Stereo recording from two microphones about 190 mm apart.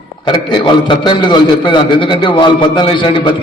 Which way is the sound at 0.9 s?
25° left (ahead or behind).